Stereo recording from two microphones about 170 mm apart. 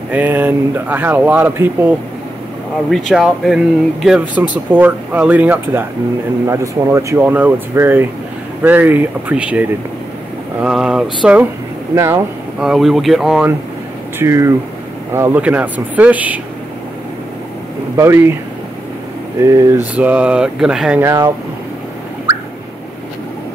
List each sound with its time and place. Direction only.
0.1 s speech: 10° right (ahead or behind)
3.1 s speech: centre (ahead or behind)
11.9 s speech: 15° right (ahead or behind)
12.5 s speech: centre (ahead or behind)
14.1 s speech: 15° right (ahead or behind)
17.9 s speech: 15° right (ahead or behind)
19.4 s speech: 20° right (ahead or behind)
20.0 s speech: 10° right (ahead or behind)
21.0 s speech: 20° right (ahead or behind)